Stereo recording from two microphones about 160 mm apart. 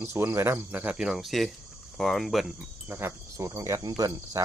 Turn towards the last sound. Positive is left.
turn(degrees=-25)  # may be behind; listen again after turning